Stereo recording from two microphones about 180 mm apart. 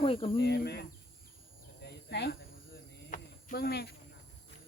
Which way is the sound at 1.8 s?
65° left (ahead or behind).